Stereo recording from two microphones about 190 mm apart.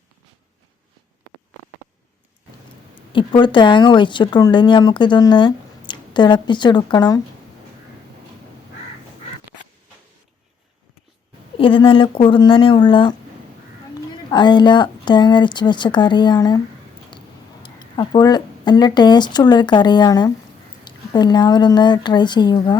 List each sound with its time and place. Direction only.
3.1 s speech: 25° left (ahead or behind)
11.5 s speech: 25° left (ahead or behind)
14.3 s speech: 25° left (ahead or behind)
17.1 s a sound: 25° left (ahead or behind)
17.6 s speech: 20° left (ahead or behind)